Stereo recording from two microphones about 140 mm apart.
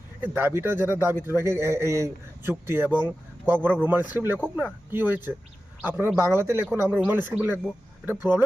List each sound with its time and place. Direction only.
0.2 s a man's voice: 15° right (ahead or behind)